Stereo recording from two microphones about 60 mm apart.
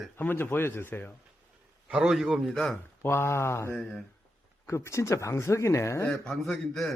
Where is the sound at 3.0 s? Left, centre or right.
Left.